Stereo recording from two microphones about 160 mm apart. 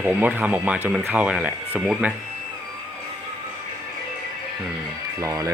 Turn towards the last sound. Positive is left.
turn(degrees=-20)  # may be behind; listen again after turning